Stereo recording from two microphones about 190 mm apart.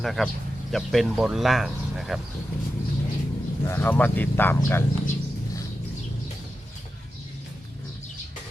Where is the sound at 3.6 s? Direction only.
10° left (ahead or behind).